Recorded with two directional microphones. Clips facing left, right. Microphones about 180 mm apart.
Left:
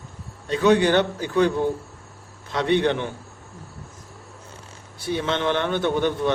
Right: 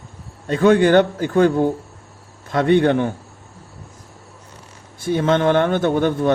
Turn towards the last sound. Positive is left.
turn(degrees=-45)  # may be behind; listen again after turning